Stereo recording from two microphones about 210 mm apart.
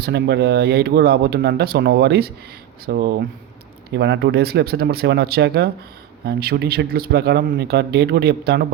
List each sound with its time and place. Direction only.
0.0 s speech: 55° right (ahead or behind)